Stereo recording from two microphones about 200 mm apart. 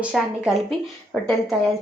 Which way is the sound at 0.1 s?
Centre (ahead or behind).